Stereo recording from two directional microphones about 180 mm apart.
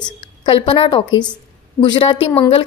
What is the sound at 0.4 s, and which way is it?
A woman's voice, 30° left (ahead or behind).